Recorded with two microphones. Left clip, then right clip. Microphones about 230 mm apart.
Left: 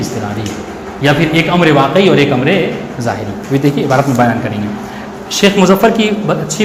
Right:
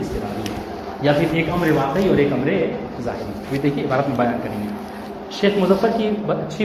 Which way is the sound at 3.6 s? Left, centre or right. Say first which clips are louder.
Left 8 dB; left.